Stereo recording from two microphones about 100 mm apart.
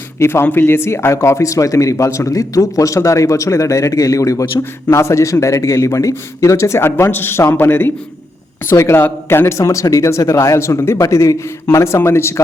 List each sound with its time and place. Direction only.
0.2 s speech: 25° left (ahead or behind)